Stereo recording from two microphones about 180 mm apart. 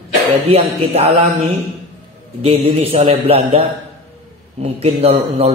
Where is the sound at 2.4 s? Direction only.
35° right (ahead or behind).